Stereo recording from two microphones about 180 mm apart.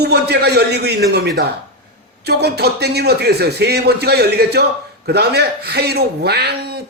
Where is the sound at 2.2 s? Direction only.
65° right (ahead or behind).